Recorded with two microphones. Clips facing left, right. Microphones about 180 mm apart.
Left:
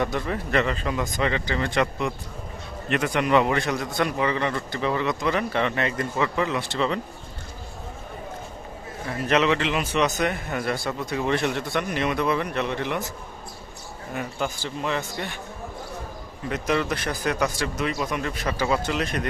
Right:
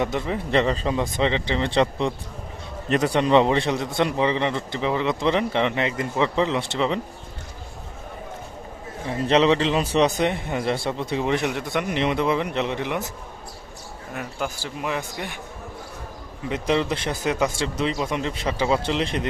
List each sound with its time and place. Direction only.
0.0 s a man's voice: 20° right (ahead or behind)
9.0 s a man's voice: 25° right (ahead or behind)
14.1 s speech: 5° right (ahead or behind)
16.5 s a man's voice: 25° right (ahead or behind)